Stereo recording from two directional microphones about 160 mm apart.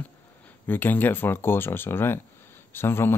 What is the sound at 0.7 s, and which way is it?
Speech, 10° left (ahead or behind).